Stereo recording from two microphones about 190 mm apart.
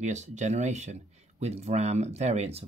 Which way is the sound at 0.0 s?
40° right (ahead or behind).